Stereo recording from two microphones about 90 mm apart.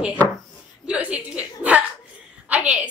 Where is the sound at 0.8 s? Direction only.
15° right (ahead or behind).